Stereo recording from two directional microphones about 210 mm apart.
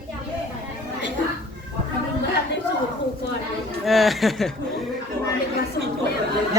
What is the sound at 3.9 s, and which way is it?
Speech, centre (ahead or behind).